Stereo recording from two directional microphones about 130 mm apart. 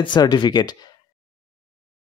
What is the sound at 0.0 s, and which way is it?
Speech, 35° left (ahead or behind).